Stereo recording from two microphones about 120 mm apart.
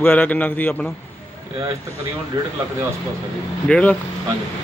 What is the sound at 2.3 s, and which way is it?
Speech, 40° right (ahead or behind).